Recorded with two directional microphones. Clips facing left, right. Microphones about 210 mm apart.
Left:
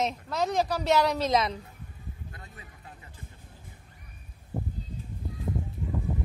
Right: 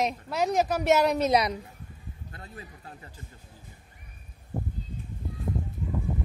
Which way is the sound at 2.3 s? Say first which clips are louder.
Right 5 dB; 35° right (ahead or behind).